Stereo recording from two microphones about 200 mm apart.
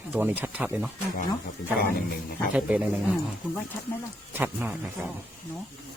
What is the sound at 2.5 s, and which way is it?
Speech, 5° right (ahead or behind).